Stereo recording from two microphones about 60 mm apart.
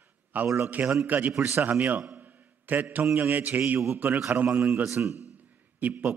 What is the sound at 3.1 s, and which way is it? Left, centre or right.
A man's voice, right.